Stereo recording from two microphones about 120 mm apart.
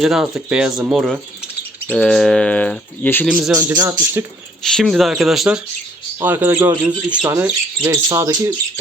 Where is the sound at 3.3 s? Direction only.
5° right (ahead or behind).